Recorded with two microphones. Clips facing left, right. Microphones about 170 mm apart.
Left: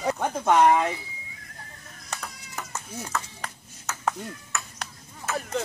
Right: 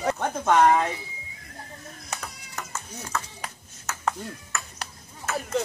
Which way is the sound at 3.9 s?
Centre (ahead or behind).